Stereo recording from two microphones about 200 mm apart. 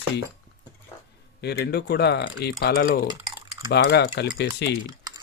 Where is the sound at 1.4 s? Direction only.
55° left (ahead or behind).